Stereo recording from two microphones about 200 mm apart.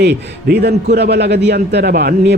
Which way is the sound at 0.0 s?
55° right (ahead or behind).